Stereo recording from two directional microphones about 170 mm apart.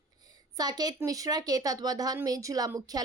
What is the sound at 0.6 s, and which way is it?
A woman's voice, 25° right (ahead or behind).